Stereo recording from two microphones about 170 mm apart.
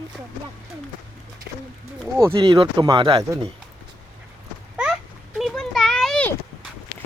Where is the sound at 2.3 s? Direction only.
30° right (ahead or behind).